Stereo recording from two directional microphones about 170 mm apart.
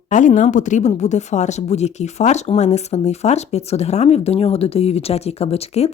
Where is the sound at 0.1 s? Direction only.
50° left (ahead or behind).